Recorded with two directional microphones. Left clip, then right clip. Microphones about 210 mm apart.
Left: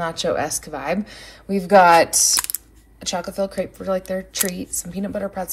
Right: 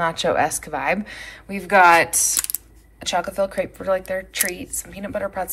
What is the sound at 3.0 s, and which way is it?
Speech, 15° left (ahead or behind).